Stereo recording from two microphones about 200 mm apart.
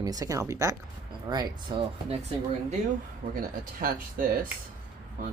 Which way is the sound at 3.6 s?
45° right (ahead or behind).